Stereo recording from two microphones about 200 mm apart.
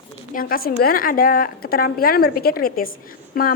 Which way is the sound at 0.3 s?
45° left (ahead or behind).